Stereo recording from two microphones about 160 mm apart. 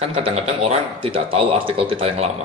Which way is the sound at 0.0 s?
40° right (ahead or behind).